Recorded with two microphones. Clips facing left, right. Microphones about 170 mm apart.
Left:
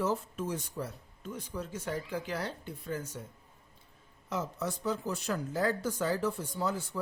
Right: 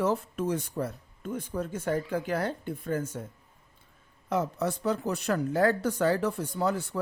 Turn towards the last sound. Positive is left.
turn(degrees=-65)  # may be behind; listen again after turning